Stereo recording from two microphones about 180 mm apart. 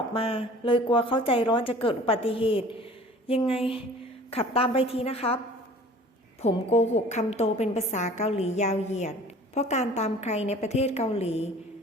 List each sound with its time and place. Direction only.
0.1 s a woman's voice: 30° left (ahead or behind)
6.4 s a woman's voice: 35° left (ahead or behind)